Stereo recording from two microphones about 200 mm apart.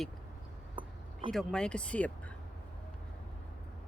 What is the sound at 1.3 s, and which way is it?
Speech, 5° left (ahead or behind).